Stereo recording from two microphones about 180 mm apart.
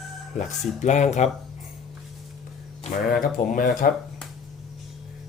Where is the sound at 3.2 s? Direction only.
50° left (ahead or behind).